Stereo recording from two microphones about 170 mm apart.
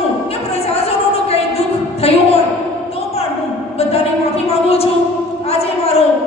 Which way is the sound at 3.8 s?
35° left (ahead or behind).